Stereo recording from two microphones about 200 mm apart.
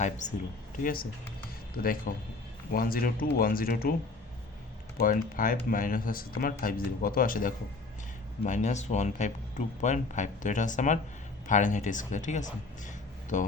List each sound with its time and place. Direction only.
0.0 s speech: 35° left (ahead or behind)
4.9 s speech: 45° left (ahead or behind)